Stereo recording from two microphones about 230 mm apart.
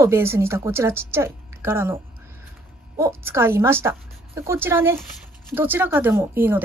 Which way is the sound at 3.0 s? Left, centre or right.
Centre.